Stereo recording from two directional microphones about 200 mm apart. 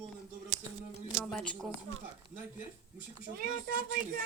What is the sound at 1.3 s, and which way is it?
Speech, 5° left (ahead or behind).